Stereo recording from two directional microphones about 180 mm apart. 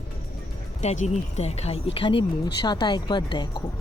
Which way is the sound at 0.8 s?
40° left (ahead or behind).